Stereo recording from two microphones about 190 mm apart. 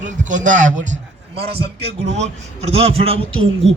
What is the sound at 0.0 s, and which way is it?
Speech, 40° right (ahead or behind).